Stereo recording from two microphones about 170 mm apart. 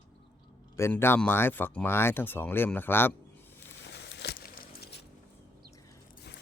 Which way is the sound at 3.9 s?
90° left.